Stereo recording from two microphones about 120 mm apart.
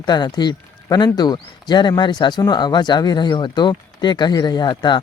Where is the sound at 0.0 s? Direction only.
35° left (ahead or behind).